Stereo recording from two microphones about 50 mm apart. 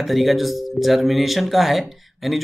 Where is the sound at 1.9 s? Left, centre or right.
Centre.